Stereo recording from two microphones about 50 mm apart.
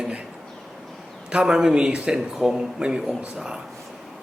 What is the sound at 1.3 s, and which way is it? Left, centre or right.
A man's voice, centre.